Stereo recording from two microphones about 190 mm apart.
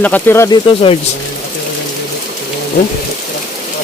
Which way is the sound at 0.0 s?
10° left (ahead or behind).